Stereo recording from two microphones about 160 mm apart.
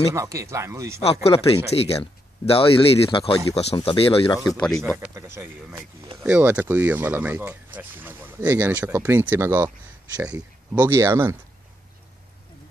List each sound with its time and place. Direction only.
0.1 s speech: 20° right (ahead or behind)
1.0 s speech: 35° left (ahead or behind)
4.4 s speech: centre (ahead or behind)
4.9 s speech: 15° right (ahead or behind)
10.7 s speech: 15° right (ahead or behind)